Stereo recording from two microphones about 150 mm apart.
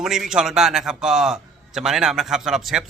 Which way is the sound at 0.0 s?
5° right (ahead or behind).